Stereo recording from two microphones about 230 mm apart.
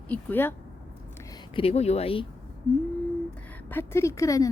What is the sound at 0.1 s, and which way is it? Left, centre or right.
Speech, centre.